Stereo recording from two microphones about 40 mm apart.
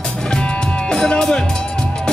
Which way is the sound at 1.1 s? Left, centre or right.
Centre.